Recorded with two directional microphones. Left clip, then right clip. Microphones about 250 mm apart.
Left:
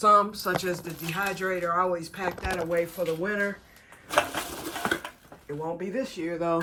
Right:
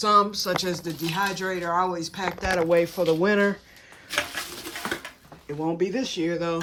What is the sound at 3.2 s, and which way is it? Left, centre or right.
Speech, right.